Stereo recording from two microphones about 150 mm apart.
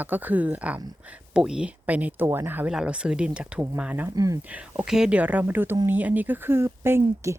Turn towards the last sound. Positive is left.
turn(degrees=-15)  # may be behind; listen again after turning